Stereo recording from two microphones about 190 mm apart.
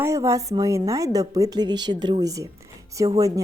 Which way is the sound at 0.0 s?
15° right (ahead or behind).